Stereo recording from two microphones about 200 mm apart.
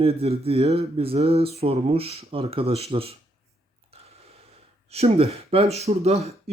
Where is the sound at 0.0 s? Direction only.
30° right (ahead or behind).